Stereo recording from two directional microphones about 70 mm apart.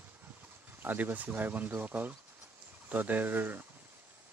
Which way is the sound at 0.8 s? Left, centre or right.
Right.